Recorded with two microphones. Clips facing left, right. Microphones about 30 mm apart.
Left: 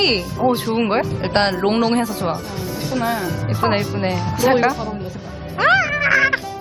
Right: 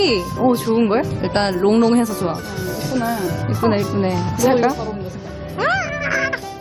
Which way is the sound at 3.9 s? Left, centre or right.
Left.